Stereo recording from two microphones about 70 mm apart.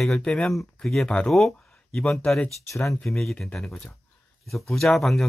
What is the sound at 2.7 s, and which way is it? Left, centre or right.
Speech, left.